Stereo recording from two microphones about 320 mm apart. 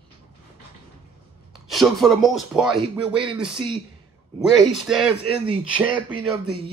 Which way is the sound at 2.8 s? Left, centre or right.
Centre.